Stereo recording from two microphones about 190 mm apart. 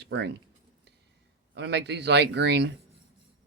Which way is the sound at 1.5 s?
65° right (ahead or behind).